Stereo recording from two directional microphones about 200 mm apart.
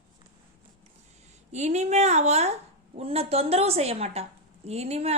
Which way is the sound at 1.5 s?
35° right (ahead or behind).